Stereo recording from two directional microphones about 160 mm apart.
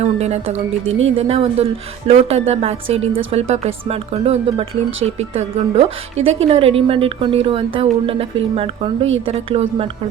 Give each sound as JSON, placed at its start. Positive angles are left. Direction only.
{"t": 0.0, "sound": "a woman's voice", "side_deg": -40}